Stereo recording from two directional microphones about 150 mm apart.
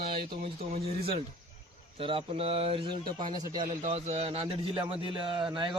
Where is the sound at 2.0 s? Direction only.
40° right (ahead or behind).